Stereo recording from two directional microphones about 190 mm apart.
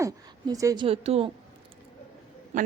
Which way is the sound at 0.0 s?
15° right (ahead or behind).